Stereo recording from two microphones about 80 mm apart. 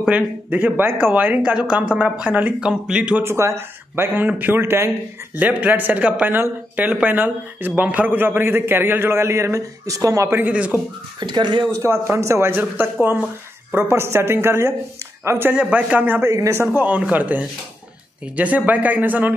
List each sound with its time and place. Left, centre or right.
0.0 s speech: centre
3.3 s a man's voice: right
5.4 s a man's voice: centre; by 10.3 s right
10.3 s a man's voice: centre
11.1 s speech: right
11.7 s a woman's voice: right
15.5 s a man's voice: centre
16.3 s a woman's voice: right
16.7 s a man's voice: centre